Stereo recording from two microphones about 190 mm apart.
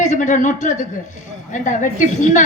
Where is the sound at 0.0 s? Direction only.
40° left (ahead or behind).